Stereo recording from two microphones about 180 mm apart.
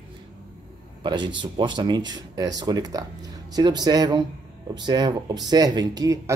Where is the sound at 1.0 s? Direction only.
25° right (ahead or behind).